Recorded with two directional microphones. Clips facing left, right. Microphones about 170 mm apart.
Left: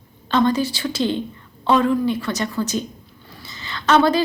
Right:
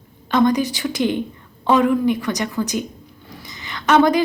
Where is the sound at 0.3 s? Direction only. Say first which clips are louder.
Right 2 dB; 15° right (ahead or behind).